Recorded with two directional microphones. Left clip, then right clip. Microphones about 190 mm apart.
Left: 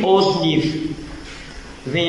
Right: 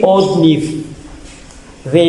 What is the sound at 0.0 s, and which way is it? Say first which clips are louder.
Speech: right 6 dB; 60° right (ahead or behind).